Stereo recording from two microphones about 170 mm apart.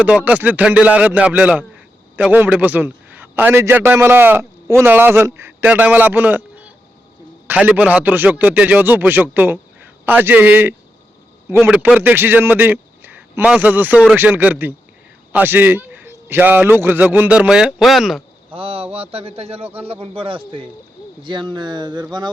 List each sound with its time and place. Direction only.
0.0 s a man's voice: 10° right (ahead or behind)
18.5 s a man's voice: 35° right (ahead or behind)